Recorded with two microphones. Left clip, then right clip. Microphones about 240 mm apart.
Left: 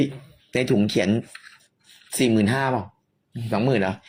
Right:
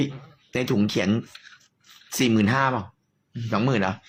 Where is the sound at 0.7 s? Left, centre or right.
Centre.